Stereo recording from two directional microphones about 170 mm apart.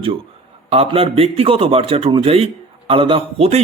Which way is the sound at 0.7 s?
35° right (ahead or behind).